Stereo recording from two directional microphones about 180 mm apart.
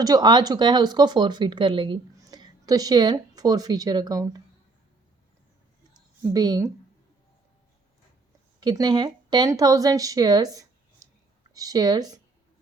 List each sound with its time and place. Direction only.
0.0 s speech: 20° right (ahead or behind)
6.3 s speech: 20° right (ahead or behind)
8.6 s speech: 20° right (ahead or behind)